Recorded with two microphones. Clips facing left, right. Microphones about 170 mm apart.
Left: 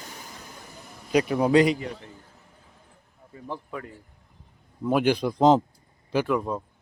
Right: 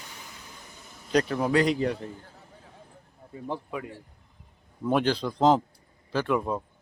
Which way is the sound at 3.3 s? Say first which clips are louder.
Right 2 dB; 20° right (ahead or behind).